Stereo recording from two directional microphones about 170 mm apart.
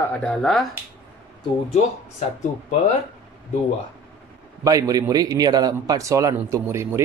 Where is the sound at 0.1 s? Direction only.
5° left (ahead or behind).